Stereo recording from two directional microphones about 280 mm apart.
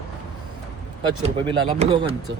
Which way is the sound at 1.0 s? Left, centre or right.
Centre.